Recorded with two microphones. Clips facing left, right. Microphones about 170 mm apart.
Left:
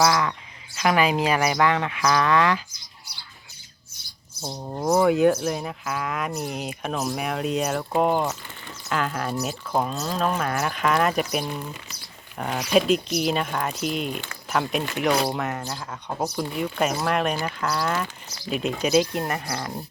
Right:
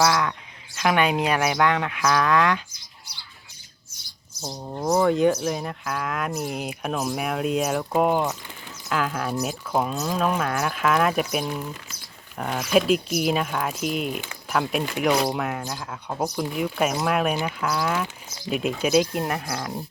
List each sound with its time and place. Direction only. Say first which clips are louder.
0.0 s livestock: even; centre (ahead or behind)
4.4 s livestock: left 1 dB; 5° left (ahead or behind)